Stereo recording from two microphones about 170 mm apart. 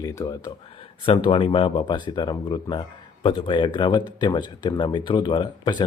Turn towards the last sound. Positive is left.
turn(degrees=25)  # may be behind; listen again after turning